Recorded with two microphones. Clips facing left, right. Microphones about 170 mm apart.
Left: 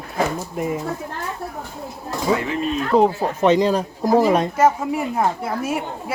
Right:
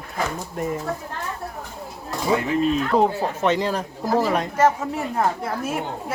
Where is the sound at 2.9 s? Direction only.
Centre (ahead or behind).